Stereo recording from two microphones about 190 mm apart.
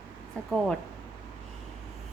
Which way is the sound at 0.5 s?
Centre (ahead or behind).